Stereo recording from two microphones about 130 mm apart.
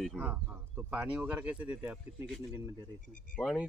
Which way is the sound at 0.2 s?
15° right (ahead or behind).